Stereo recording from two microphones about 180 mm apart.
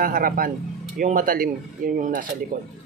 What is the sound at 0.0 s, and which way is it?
Speech, 50° right (ahead or behind).